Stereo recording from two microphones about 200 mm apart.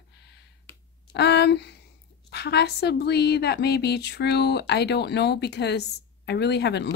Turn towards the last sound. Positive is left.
turn(degrees=55)  # may be behind; listen again after turning